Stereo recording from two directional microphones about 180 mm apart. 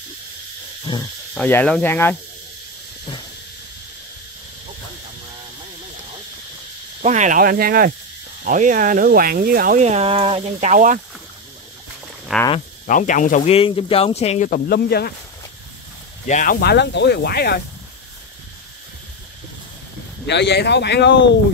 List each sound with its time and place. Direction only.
0.9 s speech: 25° left (ahead or behind)
1.3 s speech: 10° left (ahead or behind)
7.0 s speech: 40° right (ahead or behind)
12.3 s speech: 5° right (ahead or behind)
12.8 s speech: 45° left (ahead or behind)
13.6 s speech: 30° left (ahead or behind); by 15.0 s 60° left (ahead or behind)
16.3 s speech: 45° left (ahead or behind)
16.5 s speech: 65° left (ahead or behind)
20.2 s speech: 70° left (ahead or behind)